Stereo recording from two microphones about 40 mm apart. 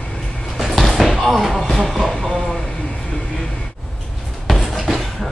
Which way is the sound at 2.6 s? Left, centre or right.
Left.